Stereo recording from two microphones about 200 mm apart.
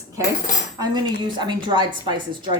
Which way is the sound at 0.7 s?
20° right (ahead or behind).